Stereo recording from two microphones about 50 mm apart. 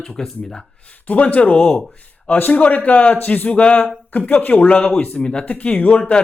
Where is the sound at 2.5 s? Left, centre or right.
Left.